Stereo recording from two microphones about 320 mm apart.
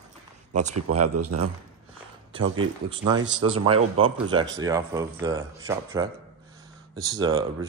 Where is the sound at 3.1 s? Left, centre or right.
Centre.